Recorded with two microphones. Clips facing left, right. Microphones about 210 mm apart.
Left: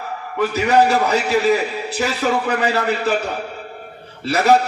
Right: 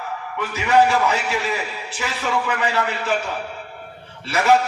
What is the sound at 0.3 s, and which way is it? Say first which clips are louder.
A man's voice: left 3 dB; 40° left (ahead or behind).